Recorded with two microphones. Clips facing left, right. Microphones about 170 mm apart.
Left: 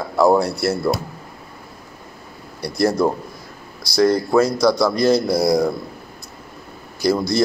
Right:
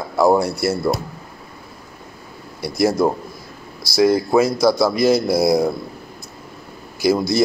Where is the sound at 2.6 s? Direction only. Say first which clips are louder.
Right 1 dB; 5° right (ahead or behind).